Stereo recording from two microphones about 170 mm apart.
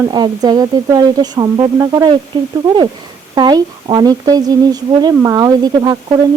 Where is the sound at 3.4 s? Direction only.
25° right (ahead or behind).